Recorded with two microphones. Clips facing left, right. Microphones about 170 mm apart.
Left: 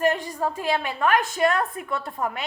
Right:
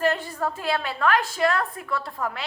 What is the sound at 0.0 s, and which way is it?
A woman's voice, 15° left (ahead or behind).